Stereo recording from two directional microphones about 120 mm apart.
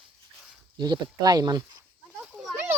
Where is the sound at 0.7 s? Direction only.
35° right (ahead or behind).